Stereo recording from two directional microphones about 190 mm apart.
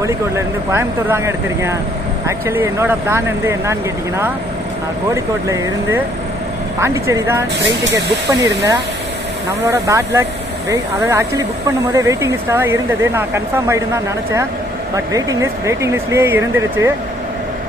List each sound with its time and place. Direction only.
0.0 s speech: 15° right (ahead or behind)
5.1 s speech: 15° right (ahead or behind)
9.7 s speech: 15° right (ahead or behind)
15.1 s speech: 15° right (ahead or behind)